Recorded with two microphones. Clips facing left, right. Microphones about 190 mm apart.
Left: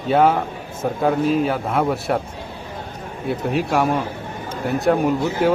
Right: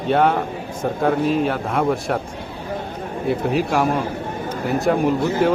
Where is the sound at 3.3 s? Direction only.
Centre (ahead or behind).